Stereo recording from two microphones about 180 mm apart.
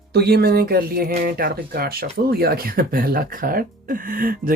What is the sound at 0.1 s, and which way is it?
Speech, 65° right (ahead or behind).